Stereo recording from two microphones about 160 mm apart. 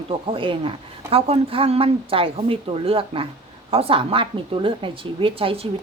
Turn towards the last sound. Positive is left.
turn(degrees=-35)  # may be behind; listen again after turning